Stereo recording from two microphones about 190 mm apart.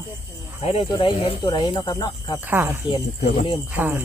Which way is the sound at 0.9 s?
25° left (ahead or behind).